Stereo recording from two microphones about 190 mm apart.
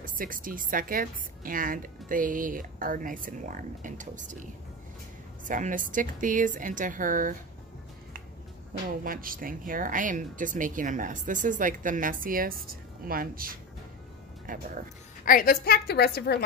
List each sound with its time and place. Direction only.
0.0 s a woman's voice: 45° right (ahead or behind)
8.8 s a woman's voice: 45° right (ahead or behind)
15.2 s a woman's voice: 50° left (ahead or behind)